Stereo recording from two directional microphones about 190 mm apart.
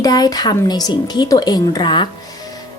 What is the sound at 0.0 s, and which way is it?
A woman's voice, 20° left (ahead or behind).